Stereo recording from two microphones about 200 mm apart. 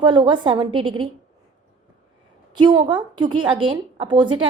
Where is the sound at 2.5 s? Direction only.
20° right (ahead or behind).